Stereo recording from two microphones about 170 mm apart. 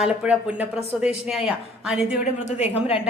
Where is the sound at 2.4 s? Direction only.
40° left (ahead or behind).